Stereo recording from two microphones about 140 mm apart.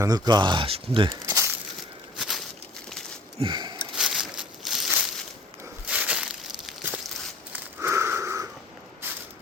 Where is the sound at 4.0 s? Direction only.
5° right (ahead or behind).